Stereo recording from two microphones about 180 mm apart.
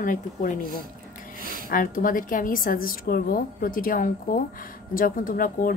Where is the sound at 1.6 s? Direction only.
50° left (ahead or behind).